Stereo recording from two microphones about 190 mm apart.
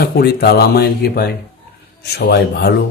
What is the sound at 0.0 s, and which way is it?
A man's voice, 55° left (ahead or behind).